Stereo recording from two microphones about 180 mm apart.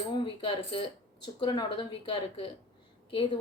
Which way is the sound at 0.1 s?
25° left (ahead or behind).